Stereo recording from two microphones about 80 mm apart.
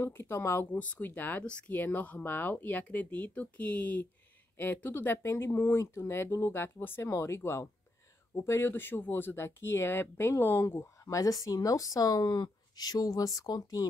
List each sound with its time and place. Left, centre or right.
0.0 s speech: left
0.7 s speech: centre; by 13.8 s left